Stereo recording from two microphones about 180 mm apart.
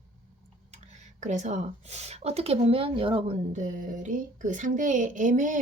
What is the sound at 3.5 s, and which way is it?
Speech, 45° right (ahead or behind).